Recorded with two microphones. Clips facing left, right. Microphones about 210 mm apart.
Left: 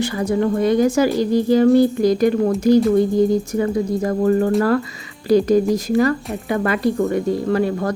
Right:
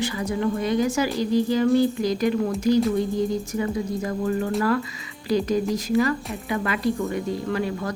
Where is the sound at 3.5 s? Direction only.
45° left (ahead or behind).